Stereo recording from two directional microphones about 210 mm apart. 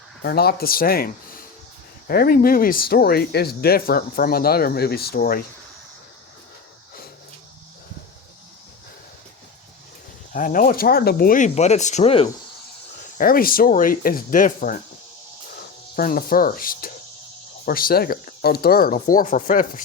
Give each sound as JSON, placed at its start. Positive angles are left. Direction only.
{"t": 0.2, "sound": "speech", "side_deg": 50}
{"t": 10.3, "sound": "speech", "side_deg": 40}
{"t": 13.1, "sound": "speech", "side_deg": 45}